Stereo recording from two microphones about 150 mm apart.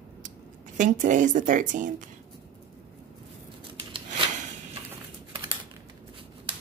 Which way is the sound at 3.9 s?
35° right (ahead or behind).